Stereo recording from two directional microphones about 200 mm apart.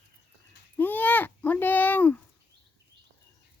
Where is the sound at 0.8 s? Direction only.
10° left (ahead or behind).